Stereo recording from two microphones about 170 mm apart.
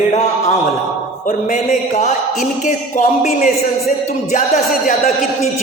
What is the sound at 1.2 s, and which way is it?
Speech, 50° left (ahead or behind).